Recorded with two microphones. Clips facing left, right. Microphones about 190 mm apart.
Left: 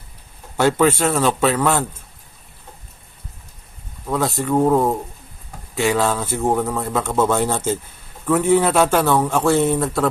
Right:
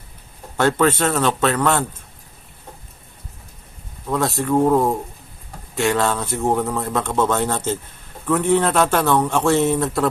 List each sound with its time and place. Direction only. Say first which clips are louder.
0.5 s speech: left 1 dB; 10° left (ahead or behind)
4.0 s a man's voice: even; centre (ahead or behind)